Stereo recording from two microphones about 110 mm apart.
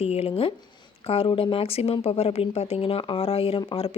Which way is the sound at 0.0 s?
70° left (ahead or behind).